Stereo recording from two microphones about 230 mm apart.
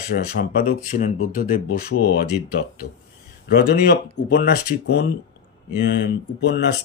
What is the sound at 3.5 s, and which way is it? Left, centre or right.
Speech, left.